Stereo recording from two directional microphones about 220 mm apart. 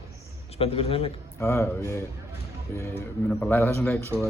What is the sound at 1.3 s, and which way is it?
Speech, 10° left (ahead or behind).